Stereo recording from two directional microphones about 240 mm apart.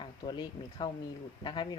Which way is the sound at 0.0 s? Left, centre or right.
Centre.